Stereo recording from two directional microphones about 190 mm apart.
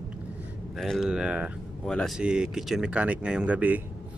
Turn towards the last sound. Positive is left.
turn(degrees=-10)  # may be behind; listen again after turning